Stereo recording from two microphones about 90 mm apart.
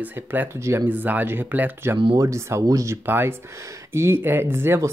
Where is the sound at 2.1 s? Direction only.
35° right (ahead or behind).